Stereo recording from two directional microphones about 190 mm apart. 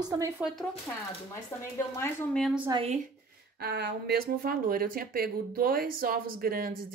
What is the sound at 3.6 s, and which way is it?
Speech, 55° right (ahead or behind).